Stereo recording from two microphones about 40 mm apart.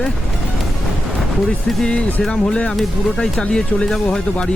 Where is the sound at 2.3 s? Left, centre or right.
Left.